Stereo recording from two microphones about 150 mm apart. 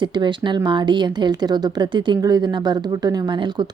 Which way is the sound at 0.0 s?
30° right (ahead or behind).